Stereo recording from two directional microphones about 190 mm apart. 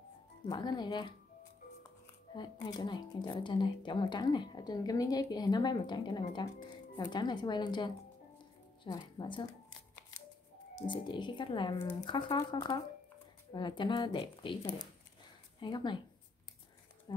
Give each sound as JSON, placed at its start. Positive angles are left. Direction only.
{"t": 0.5, "sound": "speech", "side_deg": 20}
{"t": 2.3, "sound": "a woman's voice", "side_deg": 20}
{"t": 10.8, "sound": "speech", "side_deg": 25}